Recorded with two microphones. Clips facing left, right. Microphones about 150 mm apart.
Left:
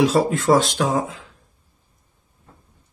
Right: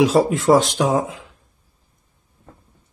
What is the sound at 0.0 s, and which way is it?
Speech, 20° right (ahead or behind).